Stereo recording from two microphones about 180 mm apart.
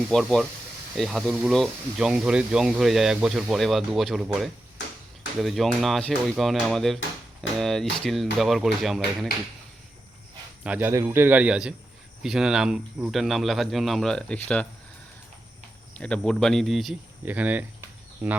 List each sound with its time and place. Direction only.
0.1 s speech: centre (ahead or behind)
10.6 s a man's voice: 10° right (ahead or behind); by 14.7 s 5° left (ahead or behind)
16.0 s a man's voice: 5° left (ahead or behind)